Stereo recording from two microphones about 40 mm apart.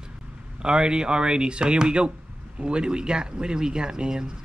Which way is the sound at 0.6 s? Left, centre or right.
Centre.